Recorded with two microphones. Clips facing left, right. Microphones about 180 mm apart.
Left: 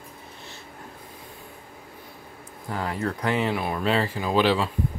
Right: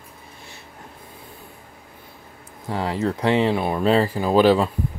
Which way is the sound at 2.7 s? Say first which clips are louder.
Right 5 dB; 25° right (ahead or behind).